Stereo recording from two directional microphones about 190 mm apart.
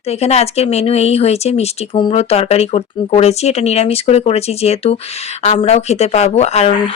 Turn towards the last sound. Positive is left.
turn(degrees=35)  # may be behind; listen again after turning